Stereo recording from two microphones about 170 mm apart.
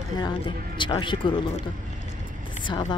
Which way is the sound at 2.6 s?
25° left (ahead or behind).